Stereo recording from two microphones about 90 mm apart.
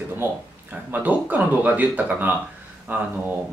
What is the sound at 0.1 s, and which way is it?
Speech, 20° right (ahead or behind).